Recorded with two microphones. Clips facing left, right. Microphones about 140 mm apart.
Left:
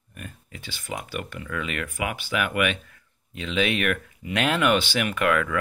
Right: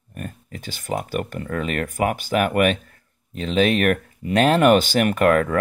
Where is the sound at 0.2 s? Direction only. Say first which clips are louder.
Right 7 dB; 45° right (ahead or behind).